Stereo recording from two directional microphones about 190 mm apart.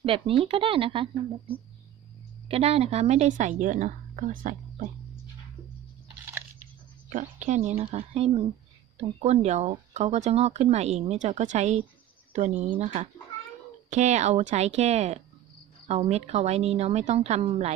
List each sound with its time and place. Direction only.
0.0 s speech: 30° right (ahead or behind)
2.4 s speech: 30° right (ahead or behind)
7.1 s a woman's voice: 45° right (ahead or behind)
7.8 s speech: 30° right (ahead or behind)